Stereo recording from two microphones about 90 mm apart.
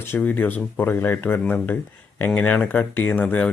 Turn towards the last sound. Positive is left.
turn(degrees=20)  # may be behind; listen again after turning